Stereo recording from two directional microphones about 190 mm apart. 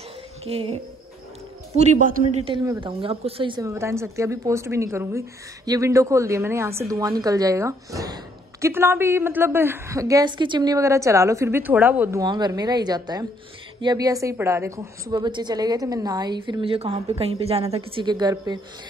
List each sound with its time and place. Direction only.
0.5 s a woman's voice: 30° right (ahead or behind)
1.8 s a man's voice: 40° right (ahead or behind)
2.8 s a woman's voice: 30° right (ahead or behind)